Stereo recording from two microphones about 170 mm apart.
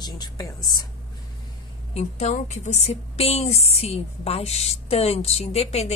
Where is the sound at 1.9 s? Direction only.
40° left (ahead or behind).